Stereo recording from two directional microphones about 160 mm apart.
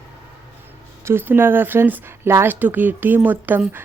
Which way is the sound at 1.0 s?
15° right (ahead or behind).